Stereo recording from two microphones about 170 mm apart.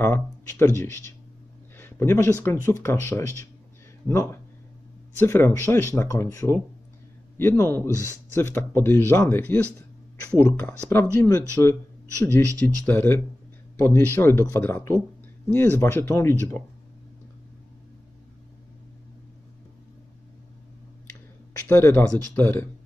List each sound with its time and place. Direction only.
0.0 s speech: 15° left (ahead or behind)
21.6 s speech: 15° left (ahead or behind)